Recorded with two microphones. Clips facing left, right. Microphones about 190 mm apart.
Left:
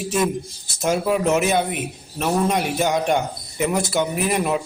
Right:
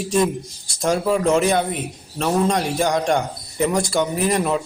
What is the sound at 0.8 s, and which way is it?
Speech, 5° left (ahead or behind).